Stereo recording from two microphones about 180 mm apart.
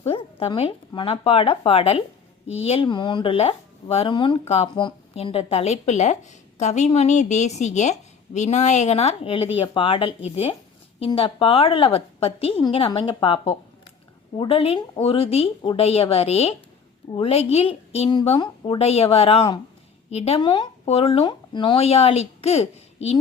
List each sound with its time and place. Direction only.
0.0 s speech: 35° left (ahead or behind)